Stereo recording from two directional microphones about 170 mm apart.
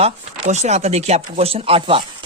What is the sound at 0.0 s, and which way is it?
Speech, 40° right (ahead or behind).